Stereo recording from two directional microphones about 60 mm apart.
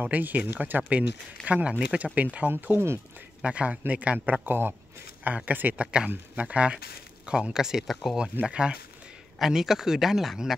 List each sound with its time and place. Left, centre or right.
0.0 s speech: right
1.7 s speech: centre
2.5 s speech: right
3.4 s speech: centre
4.5 s speech: right; by 8.2 s centre
8.2 s speech: centre
9.4 s a man's voice: centre